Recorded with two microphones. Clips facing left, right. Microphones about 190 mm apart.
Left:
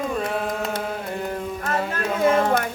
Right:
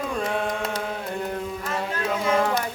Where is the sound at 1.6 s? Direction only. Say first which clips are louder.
Left 3 dB; 50° left (ahead or behind).